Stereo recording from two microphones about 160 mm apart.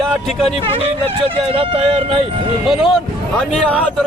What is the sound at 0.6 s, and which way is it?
Speech, 35° right (ahead or behind).